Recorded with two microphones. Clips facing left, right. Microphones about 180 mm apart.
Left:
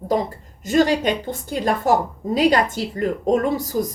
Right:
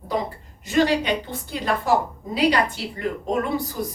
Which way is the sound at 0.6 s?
45° left (ahead or behind).